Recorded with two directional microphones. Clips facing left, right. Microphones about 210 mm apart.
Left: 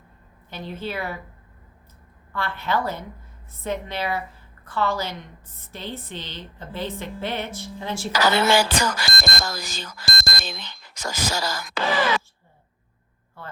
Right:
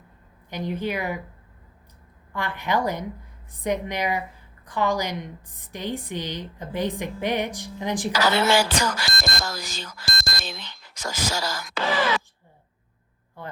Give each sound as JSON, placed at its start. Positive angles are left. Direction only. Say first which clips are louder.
{"t": 0.5, "sound": "a woman's voice", "louder": "right 4 dB", "side_deg": -15}
{"t": 2.3, "sound": "a woman's voice", "louder": "even", "side_deg": -15}
{"t": 8.2, "sound": "speech", "louder": "left 2 dB", "side_deg": 50}
{"t": 13.4, "sound": "a woman's voice", "louder": "right 2 dB", "side_deg": -15}